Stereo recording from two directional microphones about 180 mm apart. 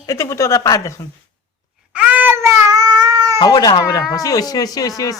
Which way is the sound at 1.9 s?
10° right (ahead or behind).